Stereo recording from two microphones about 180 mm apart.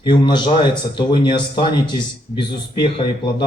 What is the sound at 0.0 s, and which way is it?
A man's voice, 25° left (ahead or behind).